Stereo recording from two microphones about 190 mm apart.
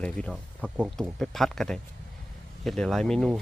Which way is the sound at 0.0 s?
5° left (ahead or behind).